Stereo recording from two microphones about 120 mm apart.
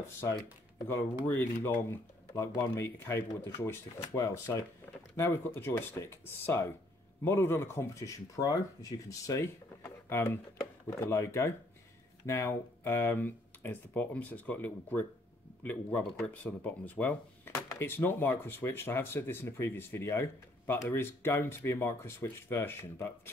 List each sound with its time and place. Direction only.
0.2 s speech: 25° left (ahead or behind)